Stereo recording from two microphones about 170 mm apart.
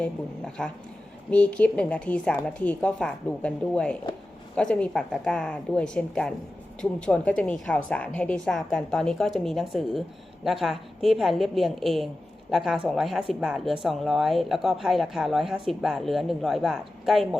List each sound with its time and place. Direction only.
0.0 s a woman's voice: 5° left (ahead or behind)